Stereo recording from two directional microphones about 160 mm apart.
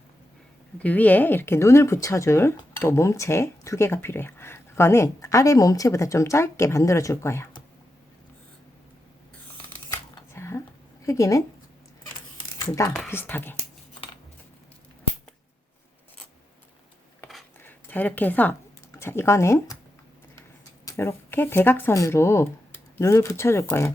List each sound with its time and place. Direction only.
0.8 s speech: 10° left (ahead or behind)
10.2 s a sound: 15° left (ahead or behind)
11.0 s speech: 20° left (ahead or behind)
12.6 s speech: 20° left (ahead or behind)
17.6 s a sound: 10° left (ahead or behind)
18.9 s speech: 15° left (ahead or behind)
20.8 s speech: 15° left (ahead or behind)